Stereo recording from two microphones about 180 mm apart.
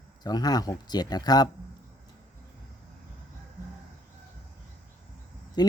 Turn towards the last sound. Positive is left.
turn(degrees=25)  # may be behind; listen again after turning